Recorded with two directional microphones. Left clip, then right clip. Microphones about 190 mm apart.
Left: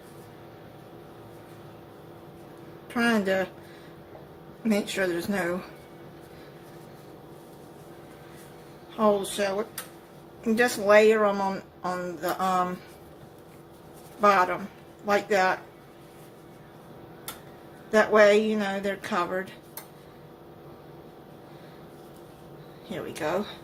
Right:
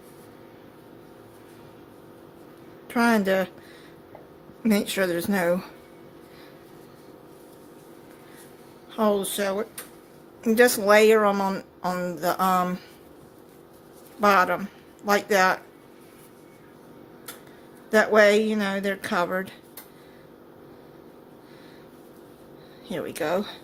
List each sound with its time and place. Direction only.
2.9 s speech: 50° right (ahead or behind)
4.6 s speech: 50° right (ahead or behind)
9.0 s speech: 50° right (ahead or behind)
14.2 s speech: 50° right (ahead or behind)
17.9 s speech: 50° right (ahead or behind)
22.9 s speech: 50° right (ahead or behind)